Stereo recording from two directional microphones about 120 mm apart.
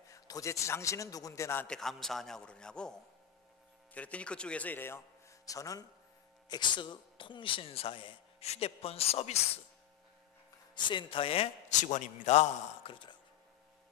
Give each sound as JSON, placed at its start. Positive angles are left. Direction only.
{"t": 0.1, "sound": "a man's voice", "side_deg": 25}
{"t": 1.7, "sound": "a man's voice", "side_deg": 5}
{"t": 5.4, "sound": "a man's voice", "side_deg": 30}
{"t": 6.5, "sound": "a man's voice", "side_deg": 40}
{"t": 8.5, "sound": "a man's voice", "side_deg": 55}
{"t": 10.7, "sound": "a man's voice", "side_deg": 40}
{"t": 11.8, "sound": "a man's voice", "side_deg": 80}
{"t": 12.8, "sound": "speech", "side_deg": 40}